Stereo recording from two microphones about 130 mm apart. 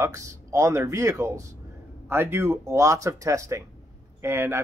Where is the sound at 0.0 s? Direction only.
25° right (ahead or behind).